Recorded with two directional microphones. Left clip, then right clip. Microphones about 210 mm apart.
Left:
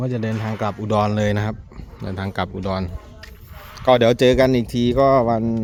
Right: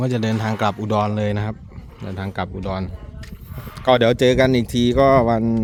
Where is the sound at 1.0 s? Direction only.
Centre (ahead or behind).